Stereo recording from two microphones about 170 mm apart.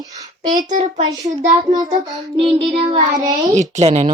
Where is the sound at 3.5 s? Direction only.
40° right (ahead or behind).